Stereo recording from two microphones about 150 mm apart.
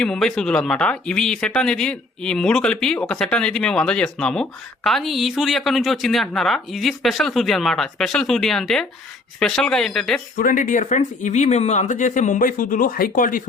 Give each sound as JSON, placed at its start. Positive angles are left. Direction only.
{"t": 0.0, "sound": "speech", "side_deg": 5}
{"t": 10.3, "sound": "speech", "side_deg": 60}